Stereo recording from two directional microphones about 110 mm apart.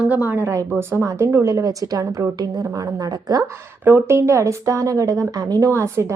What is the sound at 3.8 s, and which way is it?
Speech, 25° right (ahead or behind).